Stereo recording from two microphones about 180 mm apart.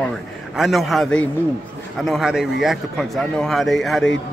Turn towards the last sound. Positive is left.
turn(degrees=0)  # may be behind; listen again after turning